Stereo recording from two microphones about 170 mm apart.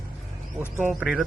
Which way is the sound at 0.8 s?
10° right (ahead or behind).